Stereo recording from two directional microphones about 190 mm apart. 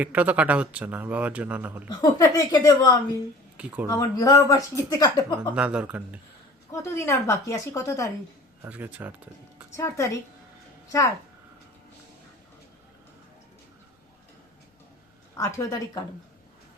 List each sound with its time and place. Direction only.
0.0 s speech: 10° right (ahead or behind)
2.0 s speech: 20° left (ahead or behind)
3.6 s speech: 10° right (ahead or behind)
3.8 s speech: 20° left (ahead or behind)
5.5 s speech: 5° right (ahead or behind)
6.7 s a woman's voice: 15° left (ahead or behind)
8.6 s speech: 10° right (ahead or behind)
9.7 s a woman's voice: 15° left (ahead or behind)
15.4 s a woman's voice: 15° left (ahead or behind)